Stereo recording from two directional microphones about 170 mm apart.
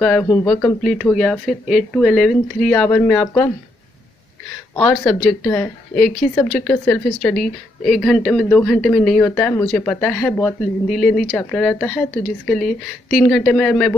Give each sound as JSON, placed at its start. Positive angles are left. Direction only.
{"t": 0.0, "sound": "speech", "side_deg": 5}
{"t": 4.7, "sound": "speech", "side_deg": 15}